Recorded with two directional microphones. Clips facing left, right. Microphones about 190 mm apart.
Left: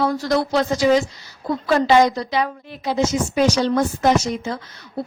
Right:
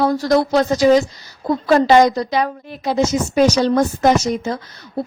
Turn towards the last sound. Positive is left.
turn(degrees=-40)  # may be behind; listen again after turning